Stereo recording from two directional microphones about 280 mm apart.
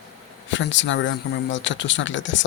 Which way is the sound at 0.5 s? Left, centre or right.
Left.